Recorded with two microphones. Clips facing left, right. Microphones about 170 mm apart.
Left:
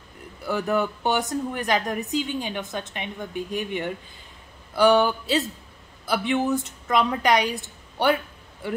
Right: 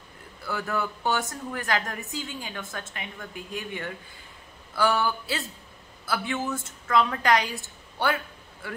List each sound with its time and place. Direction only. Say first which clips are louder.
0.5 s a woman's voice: left 6 dB; 20° left (ahead or behind)